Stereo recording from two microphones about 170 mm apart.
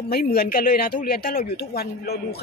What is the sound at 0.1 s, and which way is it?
A man's voice, 60° left (ahead or behind).